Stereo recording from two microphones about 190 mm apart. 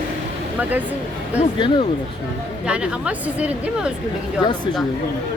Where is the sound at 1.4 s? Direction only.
25° left (ahead or behind).